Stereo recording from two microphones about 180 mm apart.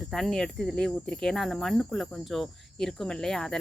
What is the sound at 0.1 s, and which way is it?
A woman's voice, centre (ahead or behind).